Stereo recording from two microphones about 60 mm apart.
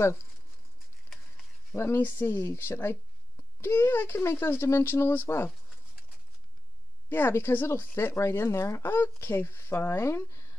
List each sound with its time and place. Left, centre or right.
1.1 s a sound: centre
2.0 s speech: left
7.1 s speech: left